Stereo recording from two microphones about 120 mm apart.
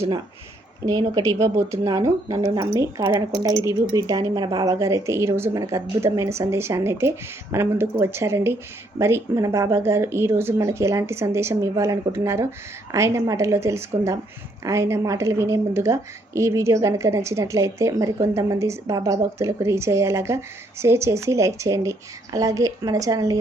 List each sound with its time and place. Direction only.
0.9 s speech: 30° right (ahead or behind)